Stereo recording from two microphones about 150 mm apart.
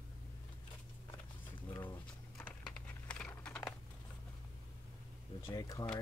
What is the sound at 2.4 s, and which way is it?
Computer keyboard, 5° left (ahead or behind).